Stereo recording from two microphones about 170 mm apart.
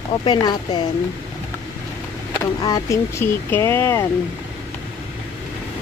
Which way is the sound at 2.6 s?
20° left (ahead or behind).